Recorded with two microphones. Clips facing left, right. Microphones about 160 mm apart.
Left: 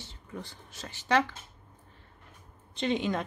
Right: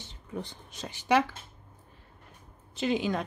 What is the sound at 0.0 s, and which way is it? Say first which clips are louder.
Speech: right 4 dB; 20° right (ahead or behind).